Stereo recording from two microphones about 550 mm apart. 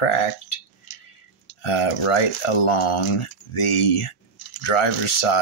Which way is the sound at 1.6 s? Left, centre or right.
Left.